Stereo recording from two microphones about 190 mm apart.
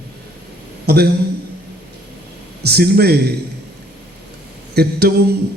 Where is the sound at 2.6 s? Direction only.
55° right (ahead or behind).